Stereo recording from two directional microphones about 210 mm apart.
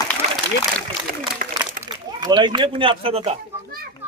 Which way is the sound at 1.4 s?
40° right (ahead or behind).